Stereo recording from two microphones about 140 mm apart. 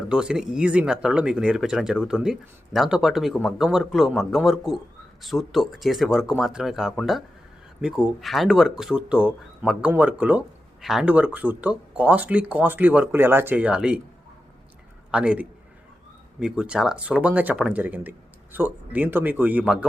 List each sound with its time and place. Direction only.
0.1 s speech: 5° right (ahead or behind)
15.1 s speech: 10° right (ahead or behind)